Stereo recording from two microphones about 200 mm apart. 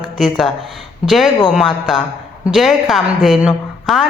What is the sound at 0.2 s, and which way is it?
A woman's voice, centre (ahead or behind).